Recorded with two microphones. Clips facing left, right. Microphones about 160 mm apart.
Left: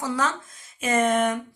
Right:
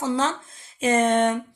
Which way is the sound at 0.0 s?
25° right (ahead or behind).